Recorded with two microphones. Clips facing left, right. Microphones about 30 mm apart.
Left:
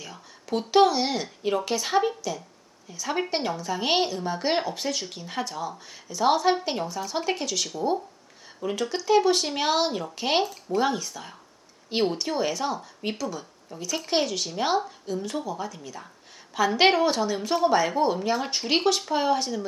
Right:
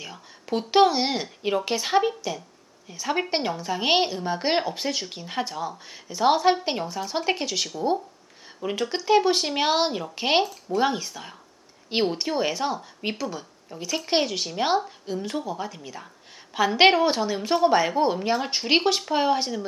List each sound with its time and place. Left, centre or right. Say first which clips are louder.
0.0 s a sound: right 2 dB; centre
0.7 s speech: right 1 dB; centre
8.9 s speech: right 1 dB; right